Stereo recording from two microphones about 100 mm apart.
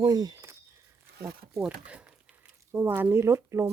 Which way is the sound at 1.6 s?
10° right (ahead or behind).